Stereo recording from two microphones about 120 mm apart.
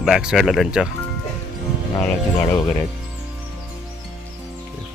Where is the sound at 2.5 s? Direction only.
30° left (ahead or behind).